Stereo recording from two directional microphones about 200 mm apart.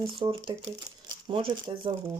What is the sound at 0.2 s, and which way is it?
Speech, 25° right (ahead or behind).